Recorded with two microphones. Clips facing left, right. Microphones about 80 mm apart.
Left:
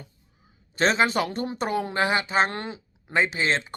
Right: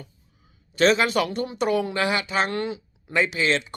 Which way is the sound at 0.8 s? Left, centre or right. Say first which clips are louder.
Right 2 dB; left.